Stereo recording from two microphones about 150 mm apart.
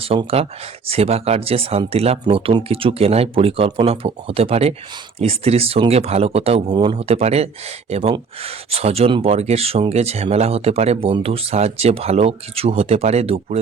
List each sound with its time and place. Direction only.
0.0 s speech: 40° right (ahead or behind)